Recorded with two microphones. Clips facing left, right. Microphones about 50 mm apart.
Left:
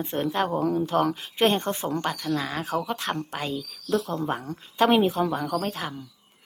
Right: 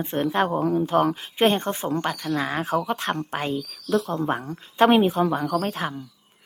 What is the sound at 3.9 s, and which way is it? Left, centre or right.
Speech, centre.